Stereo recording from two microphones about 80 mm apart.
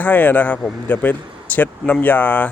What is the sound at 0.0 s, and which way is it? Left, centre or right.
Speech, left.